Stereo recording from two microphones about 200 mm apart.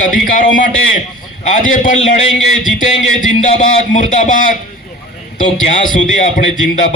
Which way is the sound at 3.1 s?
40° left (ahead or behind).